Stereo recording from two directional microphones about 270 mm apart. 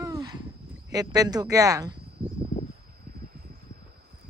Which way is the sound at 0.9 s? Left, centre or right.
Centre.